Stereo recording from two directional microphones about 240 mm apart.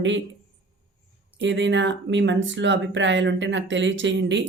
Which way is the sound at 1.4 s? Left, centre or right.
Right.